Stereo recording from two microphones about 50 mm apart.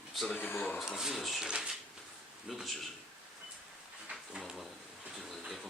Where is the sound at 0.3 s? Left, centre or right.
Left.